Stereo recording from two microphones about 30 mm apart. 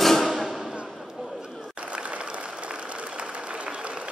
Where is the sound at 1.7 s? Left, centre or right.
Right.